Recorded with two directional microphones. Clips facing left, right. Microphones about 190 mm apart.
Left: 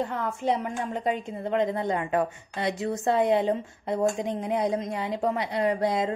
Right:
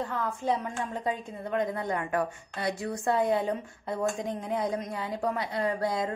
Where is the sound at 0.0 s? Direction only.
20° left (ahead or behind).